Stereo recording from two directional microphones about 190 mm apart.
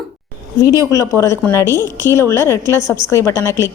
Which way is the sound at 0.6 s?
15° left (ahead or behind).